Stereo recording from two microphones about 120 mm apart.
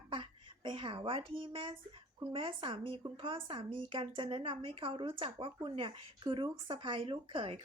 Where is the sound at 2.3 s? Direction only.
45° right (ahead or behind).